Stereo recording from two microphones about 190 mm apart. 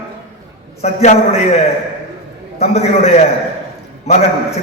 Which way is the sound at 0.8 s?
35° left (ahead or behind).